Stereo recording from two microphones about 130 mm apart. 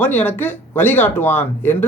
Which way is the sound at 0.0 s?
15° left (ahead or behind).